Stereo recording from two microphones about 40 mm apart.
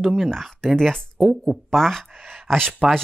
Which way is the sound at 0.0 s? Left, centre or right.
Centre.